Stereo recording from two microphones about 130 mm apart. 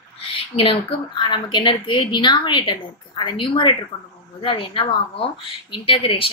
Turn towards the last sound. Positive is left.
turn(degrees=40)  # may be behind; listen again after turning